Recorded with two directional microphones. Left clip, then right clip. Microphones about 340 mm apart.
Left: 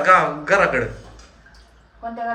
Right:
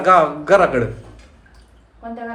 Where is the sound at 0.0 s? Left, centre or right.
Centre.